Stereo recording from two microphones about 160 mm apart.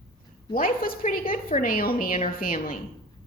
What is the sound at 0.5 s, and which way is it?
A woman's voice, 60° left (ahead or behind).